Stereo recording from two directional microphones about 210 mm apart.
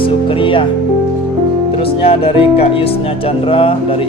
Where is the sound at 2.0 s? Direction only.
25° left (ahead or behind).